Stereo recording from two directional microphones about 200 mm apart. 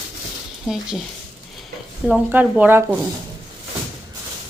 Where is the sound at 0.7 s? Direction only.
Centre (ahead or behind).